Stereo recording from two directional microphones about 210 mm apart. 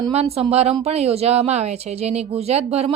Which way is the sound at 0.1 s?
30° right (ahead or behind).